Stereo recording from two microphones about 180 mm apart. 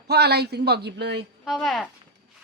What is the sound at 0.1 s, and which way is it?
Speech, 65° right (ahead or behind).